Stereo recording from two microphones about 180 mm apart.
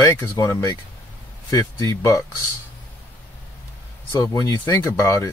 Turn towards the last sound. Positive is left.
turn(degrees=15)  # may be behind; listen again after turning